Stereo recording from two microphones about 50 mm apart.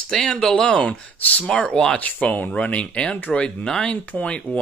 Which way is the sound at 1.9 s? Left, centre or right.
Left.